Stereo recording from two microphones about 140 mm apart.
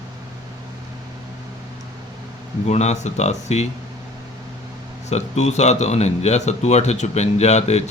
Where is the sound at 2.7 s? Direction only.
55° left (ahead or behind).